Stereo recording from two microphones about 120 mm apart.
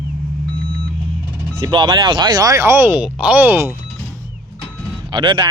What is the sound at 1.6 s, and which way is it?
Speech, 35° right (ahead or behind).